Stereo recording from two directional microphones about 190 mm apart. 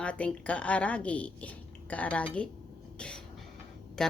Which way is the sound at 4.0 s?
5° left (ahead or behind).